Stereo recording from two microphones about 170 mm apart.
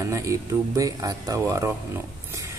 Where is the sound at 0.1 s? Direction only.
20° right (ahead or behind).